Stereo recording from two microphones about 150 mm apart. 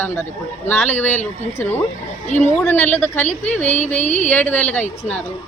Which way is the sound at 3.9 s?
50° left (ahead or behind).